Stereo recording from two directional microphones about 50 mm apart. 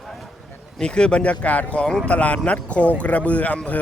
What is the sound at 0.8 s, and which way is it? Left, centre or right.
Speech, centre.